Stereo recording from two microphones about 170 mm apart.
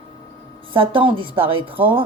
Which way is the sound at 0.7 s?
30° right (ahead or behind).